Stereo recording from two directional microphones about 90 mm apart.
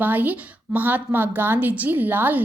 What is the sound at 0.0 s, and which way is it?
A woman's voice, 20° right (ahead or behind).